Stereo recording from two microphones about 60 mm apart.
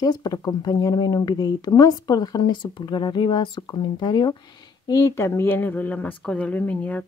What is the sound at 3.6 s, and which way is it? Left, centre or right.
Speech, left.